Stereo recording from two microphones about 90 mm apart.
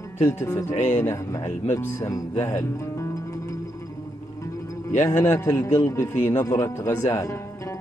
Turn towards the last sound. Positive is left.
turn(degrees=35)  # may be behind; listen again after turning